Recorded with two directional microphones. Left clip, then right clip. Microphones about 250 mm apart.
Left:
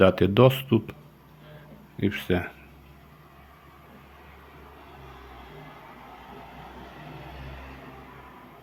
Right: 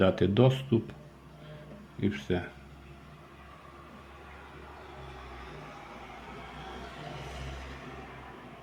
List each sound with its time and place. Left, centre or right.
0.0 s speech: centre
2.0 s speech: left